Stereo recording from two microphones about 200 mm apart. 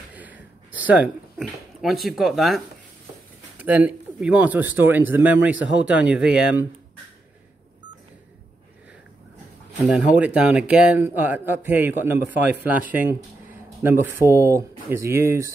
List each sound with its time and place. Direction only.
0.1 s a sound: 10° right (ahead or behind)
1.4 s speech: centre (ahead or behind)
9.8 s speech: 5° right (ahead or behind)